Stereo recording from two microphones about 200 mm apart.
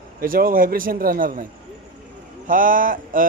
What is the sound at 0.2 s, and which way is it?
Speech, 45° right (ahead or behind).